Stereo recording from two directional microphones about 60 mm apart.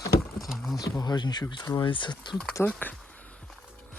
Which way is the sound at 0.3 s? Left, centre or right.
Centre.